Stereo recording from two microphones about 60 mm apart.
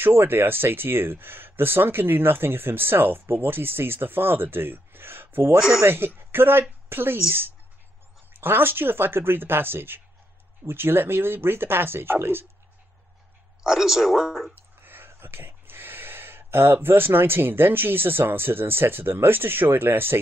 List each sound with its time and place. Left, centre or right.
0.0 s speech: right
5.6 s speech: centre
5.9 s speech: right
13.7 s speech: centre
14.5 s speech: right